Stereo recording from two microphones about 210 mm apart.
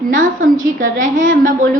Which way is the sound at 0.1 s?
40° right (ahead or behind).